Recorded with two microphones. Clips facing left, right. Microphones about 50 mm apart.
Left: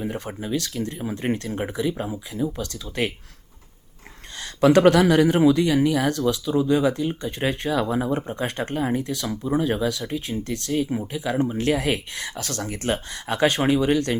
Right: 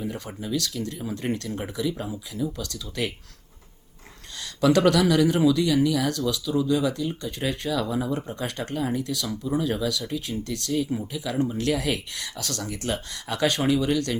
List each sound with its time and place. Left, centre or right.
0.0 s speech: left
4.4 s speech: left